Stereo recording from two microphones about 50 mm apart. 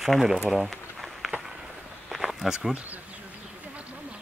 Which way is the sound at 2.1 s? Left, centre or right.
Centre.